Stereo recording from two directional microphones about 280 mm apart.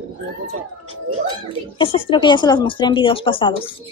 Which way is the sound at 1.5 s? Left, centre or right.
Centre.